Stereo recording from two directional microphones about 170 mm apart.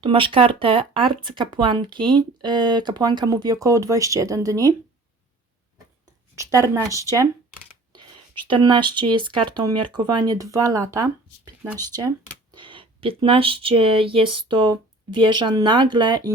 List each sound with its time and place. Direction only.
0.0 s speech: 30° right (ahead or behind)
6.3 s a woman's voice: 20° right (ahead or behind)
8.4 s speech: 25° right (ahead or behind)